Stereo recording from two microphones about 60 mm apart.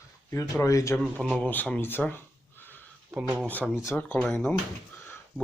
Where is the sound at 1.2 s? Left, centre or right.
Centre.